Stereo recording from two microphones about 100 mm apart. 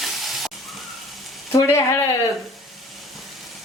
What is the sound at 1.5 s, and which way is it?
Stir, 30° left (ahead or behind).